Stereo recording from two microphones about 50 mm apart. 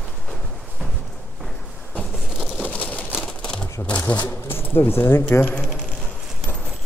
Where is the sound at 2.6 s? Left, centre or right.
Left.